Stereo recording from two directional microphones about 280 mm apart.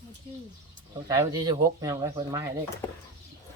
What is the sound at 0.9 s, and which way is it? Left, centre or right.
Speech, centre.